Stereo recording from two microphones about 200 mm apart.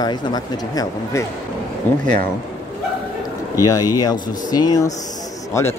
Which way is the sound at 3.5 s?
15° left (ahead or behind).